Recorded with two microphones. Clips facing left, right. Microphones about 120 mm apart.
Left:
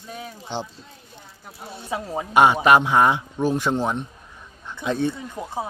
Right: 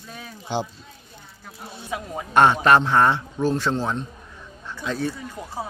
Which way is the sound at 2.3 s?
10° left (ahead or behind).